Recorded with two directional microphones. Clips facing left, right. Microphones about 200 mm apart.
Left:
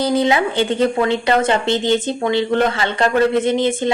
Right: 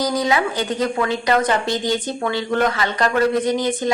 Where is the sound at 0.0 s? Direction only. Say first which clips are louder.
Left 3 dB; 25° left (ahead or behind).